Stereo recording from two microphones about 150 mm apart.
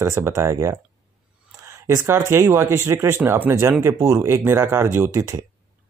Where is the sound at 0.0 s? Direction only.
20° right (ahead or behind).